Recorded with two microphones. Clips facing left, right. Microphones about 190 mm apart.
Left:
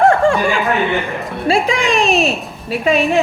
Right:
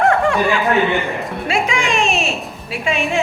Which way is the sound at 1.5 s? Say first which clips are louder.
Left 5 dB; 35° left (ahead or behind).